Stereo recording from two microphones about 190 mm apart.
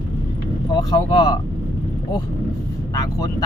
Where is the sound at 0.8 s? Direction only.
20° left (ahead or behind).